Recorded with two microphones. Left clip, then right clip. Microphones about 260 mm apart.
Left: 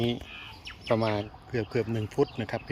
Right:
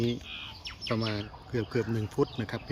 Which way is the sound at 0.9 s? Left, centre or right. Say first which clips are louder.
Left 6 dB; centre.